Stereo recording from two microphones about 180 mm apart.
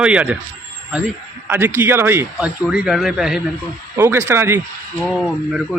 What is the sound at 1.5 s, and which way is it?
A man's voice, 10° right (ahead or behind).